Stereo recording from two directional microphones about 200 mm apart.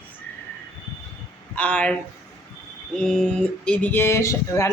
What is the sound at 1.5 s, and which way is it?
Speech, 5° left (ahead or behind).